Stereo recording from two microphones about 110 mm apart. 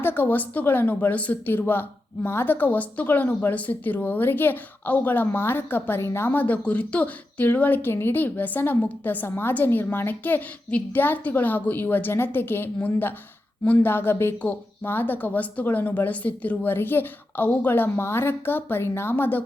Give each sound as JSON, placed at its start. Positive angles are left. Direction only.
{"t": 0.0, "sound": "a woman's voice", "side_deg": 20}